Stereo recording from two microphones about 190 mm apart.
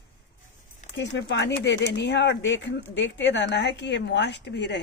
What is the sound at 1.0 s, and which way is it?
Speech, 65° left (ahead or behind).